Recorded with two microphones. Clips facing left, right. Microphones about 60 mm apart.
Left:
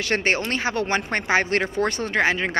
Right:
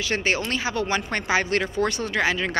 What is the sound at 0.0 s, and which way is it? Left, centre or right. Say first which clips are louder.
Speech: left 2 dB; left.